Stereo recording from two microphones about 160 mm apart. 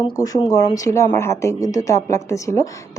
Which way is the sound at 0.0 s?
25° left (ahead or behind).